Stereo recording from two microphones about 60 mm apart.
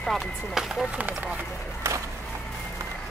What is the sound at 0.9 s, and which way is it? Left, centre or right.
Speech, right.